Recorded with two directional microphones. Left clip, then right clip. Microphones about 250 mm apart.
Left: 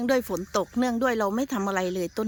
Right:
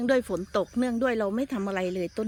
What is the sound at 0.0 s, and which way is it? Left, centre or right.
Speech, centre.